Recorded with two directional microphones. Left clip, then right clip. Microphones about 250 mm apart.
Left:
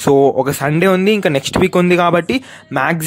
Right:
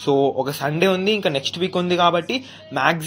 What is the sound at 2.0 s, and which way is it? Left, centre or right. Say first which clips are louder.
Speech: left 4 dB; left.